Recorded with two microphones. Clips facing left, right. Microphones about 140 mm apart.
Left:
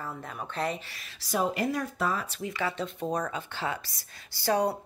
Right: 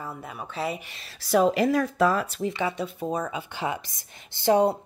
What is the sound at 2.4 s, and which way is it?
Speech, 20° right (ahead or behind).